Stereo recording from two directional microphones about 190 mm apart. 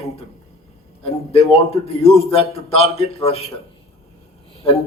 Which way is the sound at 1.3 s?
30° left (ahead or behind).